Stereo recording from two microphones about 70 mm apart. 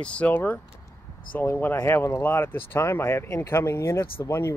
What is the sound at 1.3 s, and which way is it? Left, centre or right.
Speech, left.